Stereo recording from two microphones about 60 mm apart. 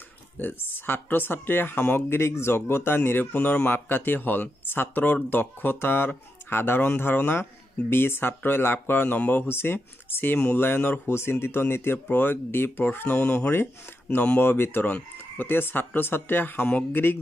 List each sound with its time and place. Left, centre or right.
0.4 s speech: left
14.0 s speech: left
14.4 s speech: left
14.9 s speech: left
15.4 s speech: left